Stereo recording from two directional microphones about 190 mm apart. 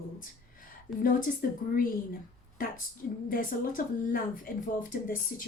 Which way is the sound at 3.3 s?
45° left (ahead or behind).